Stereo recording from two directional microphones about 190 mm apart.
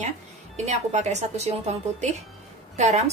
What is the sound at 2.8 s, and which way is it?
Speech, 35° right (ahead or behind).